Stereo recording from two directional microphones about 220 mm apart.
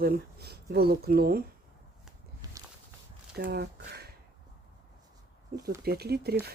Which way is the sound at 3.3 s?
45° right (ahead or behind).